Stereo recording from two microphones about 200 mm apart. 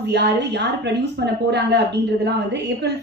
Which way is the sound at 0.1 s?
60° right (ahead or behind).